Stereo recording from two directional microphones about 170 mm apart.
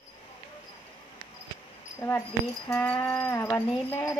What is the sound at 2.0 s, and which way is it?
Speech, 15° left (ahead or behind).